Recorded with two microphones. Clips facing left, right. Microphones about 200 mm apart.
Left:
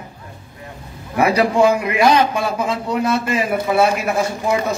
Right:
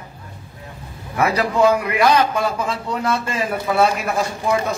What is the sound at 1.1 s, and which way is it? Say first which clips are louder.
A man's voice: left 4 dB; 15° left (ahead or behind).